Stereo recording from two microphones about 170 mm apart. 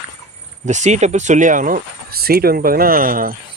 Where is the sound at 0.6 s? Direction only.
45° right (ahead or behind).